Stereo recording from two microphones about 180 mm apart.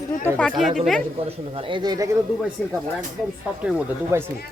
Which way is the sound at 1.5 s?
30° right (ahead or behind).